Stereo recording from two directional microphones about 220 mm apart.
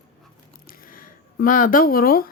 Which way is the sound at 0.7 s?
40° left (ahead or behind).